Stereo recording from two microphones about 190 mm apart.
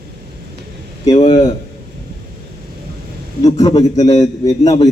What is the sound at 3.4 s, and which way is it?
Speech, 20° left (ahead or behind).